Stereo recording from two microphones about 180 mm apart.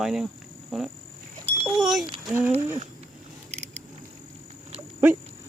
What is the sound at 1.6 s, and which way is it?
Speech, centre (ahead or behind).